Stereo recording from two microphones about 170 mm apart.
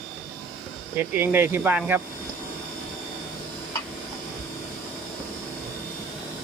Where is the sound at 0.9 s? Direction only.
10° right (ahead or behind).